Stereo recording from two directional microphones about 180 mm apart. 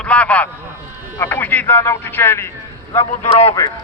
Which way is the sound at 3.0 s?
35° left (ahead or behind).